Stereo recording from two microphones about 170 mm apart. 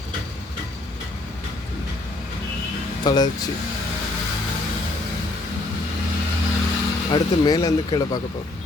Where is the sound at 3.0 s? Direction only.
25° left (ahead or behind).